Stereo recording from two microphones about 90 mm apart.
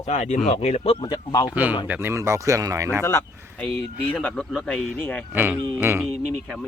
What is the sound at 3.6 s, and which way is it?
Speech, 10° left (ahead or behind).